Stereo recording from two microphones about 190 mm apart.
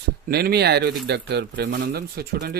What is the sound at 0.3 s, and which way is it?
Speech, 55° right (ahead or behind).